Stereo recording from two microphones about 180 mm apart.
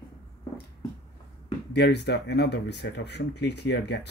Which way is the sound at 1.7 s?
70° left (ahead or behind).